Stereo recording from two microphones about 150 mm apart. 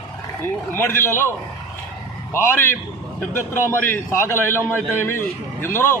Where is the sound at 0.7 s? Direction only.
15° left (ahead or behind).